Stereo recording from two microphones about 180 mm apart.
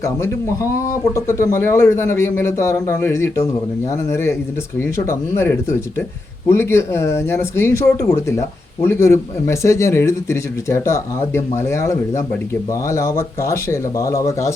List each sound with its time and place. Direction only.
0.0 s speech: 15° left (ahead or behind)
5.4 s speech: 10° left (ahead or behind)